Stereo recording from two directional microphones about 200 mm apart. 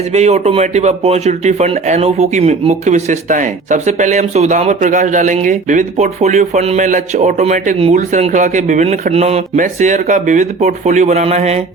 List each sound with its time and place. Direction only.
0.1 s speech: 35° right (ahead or behind)